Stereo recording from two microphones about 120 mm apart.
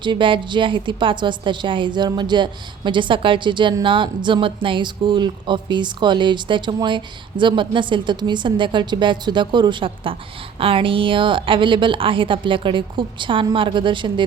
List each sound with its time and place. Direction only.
0.0 s a woman's voice: 45° right (ahead or behind)